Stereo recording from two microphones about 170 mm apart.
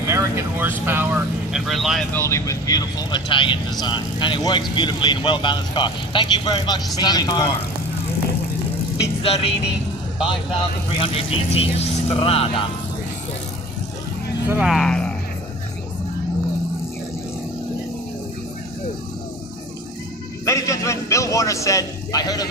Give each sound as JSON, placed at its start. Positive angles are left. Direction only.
{"t": 0.1, "sound": "vehicle", "side_deg": -15}
{"t": 1.5, "sound": "speech", "side_deg": 0}
{"t": 2.1, "sound": "speech", "side_deg": 15}
{"t": 9.2, "sound": "speech", "side_deg": 35}
{"t": 11.0, "sound": "speech", "side_deg": 35}
{"t": 14.5, "sound": "speech", "side_deg": -5}
{"t": 20.4, "sound": "music", "side_deg": 20}